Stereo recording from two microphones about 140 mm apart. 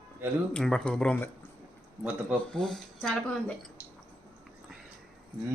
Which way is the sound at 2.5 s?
5° left (ahead or behind).